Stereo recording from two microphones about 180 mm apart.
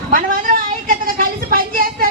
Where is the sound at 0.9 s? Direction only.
55° right (ahead or behind).